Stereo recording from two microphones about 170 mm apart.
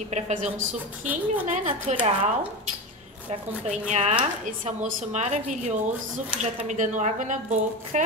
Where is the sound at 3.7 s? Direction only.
40° right (ahead or behind).